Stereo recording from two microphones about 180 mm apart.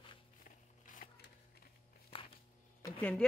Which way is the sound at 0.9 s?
50° left (ahead or behind).